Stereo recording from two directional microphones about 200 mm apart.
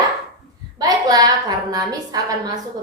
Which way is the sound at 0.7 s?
20° right (ahead or behind).